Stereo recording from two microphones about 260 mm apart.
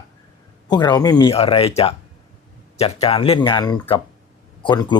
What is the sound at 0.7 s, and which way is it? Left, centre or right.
Speech, centre.